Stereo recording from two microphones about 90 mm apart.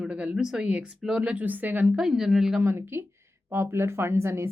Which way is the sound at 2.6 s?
25° right (ahead or behind).